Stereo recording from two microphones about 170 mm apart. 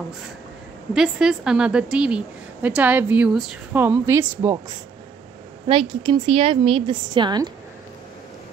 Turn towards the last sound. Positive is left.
turn(degrees=-25)  # may be behind; listen again after turning